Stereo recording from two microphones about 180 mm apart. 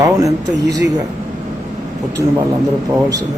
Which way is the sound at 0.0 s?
20° right (ahead or behind).